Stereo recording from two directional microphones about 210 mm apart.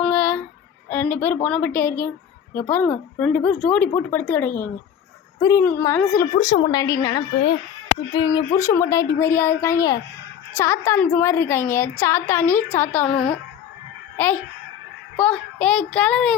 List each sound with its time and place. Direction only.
0.0 s child singing: 5° left (ahead or behind)
0.9 s a woman's voice: 10° left (ahead or behind)
6.3 s speech: 30° left (ahead or behind)
6.7 s a child's voice: 15° left (ahead or behind)